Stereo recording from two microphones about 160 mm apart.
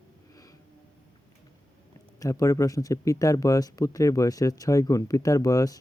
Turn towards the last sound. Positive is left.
turn(degrees=20)  # may be behind; listen again after turning